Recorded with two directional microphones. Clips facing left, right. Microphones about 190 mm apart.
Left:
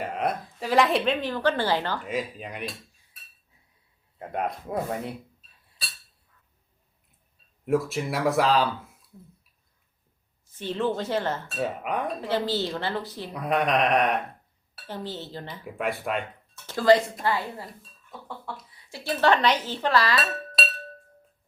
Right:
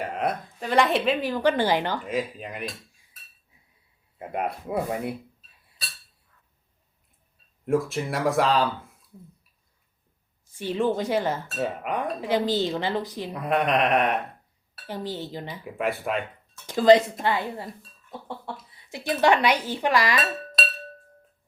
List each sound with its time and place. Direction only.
0.0 s a woman's voice: centre (ahead or behind); by 2.0 s 15° right (ahead or behind)
2.0 s a woman's voice: centre (ahead or behind)
4.2 s speech: 5° right (ahead or behind)
7.6 s a woman's voice: centre (ahead or behind)
10.5 s speech: 10° right (ahead or behind)
11.4 s a woman's voice: centre (ahead or behind)
12.2 s speech: 15° right (ahead or behind)
13.3 s a woman's voice: centre (ahead or behind)
14.8 s speech: 15° right (ahead or behind)
15.6 s a woman's voice: centre (ahead or behind)
16.6 s speech: 20° right (ahead or behind)